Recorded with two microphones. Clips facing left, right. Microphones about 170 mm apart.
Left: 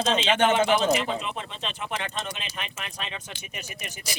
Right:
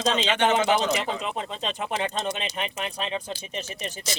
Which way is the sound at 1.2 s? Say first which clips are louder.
Right 4 dB; 35° right (ahead or behind).